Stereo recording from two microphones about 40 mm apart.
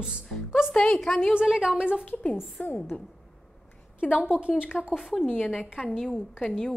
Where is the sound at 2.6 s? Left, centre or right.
Left.